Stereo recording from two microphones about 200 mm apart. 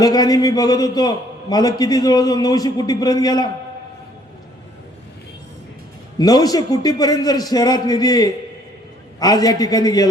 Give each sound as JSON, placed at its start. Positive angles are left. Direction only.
{"t": 0.0, "sound": "a man's voice", "side_deg": 20}
{"t": 6.1, "sound": "a man's voice", "side_deg": 20}